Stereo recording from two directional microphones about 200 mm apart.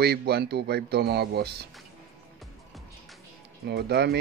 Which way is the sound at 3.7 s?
55° right (ahead or behind).